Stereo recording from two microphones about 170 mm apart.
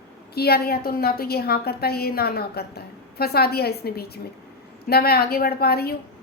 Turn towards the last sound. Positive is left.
turn(degrees=65)  # may be behind; listen again after turning